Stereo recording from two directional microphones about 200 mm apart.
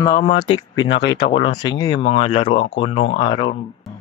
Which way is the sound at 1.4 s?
20° left (ahead or behind).